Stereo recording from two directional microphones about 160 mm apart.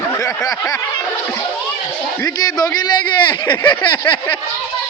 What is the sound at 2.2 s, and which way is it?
Snicker, 20° left (ahead or behind).